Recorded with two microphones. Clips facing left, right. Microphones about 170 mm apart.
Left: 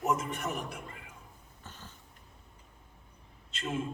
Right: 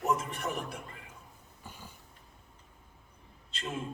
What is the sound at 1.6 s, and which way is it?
Dog, 10° right (ahead or behind).